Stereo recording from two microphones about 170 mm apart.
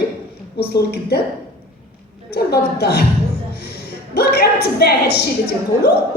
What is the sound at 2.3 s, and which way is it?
A woman's voice, 70° left (ahead or behind).